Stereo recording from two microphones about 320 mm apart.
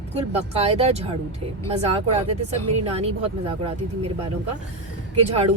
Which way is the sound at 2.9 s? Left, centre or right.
Centre.